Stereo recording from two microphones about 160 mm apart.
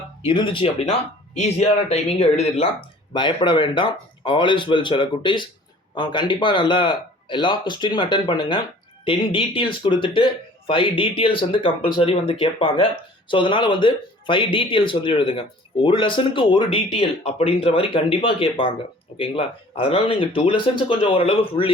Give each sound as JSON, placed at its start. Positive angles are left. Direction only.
{"t": 0.2, "sound": "speech", "side_deg": 30}
{"t": 3.1, "sound": "speech", "side_deg": 30}